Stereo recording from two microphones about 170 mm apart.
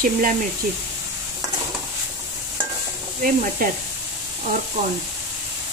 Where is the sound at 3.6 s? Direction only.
60° right (ahead or behind).